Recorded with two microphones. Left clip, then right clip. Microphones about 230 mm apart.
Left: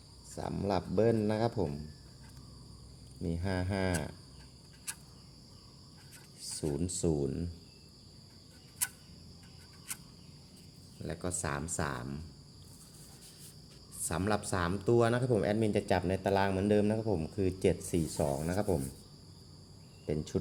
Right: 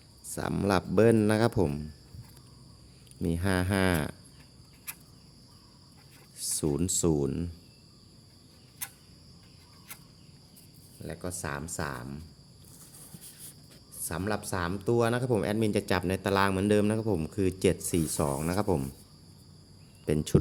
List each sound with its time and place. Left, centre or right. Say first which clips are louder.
0.3 s speech: right 6 dB; right
3.2 s speech: right 7 dB; right
6.4 s a sound: right 6 dB; right
6.7 s speech: right 4 dB; right
11.0 s speech: right 1 dB; centre
14.1 s speech: even; centre; by 18.8 s right
20.1 s speech: right 6 dB; right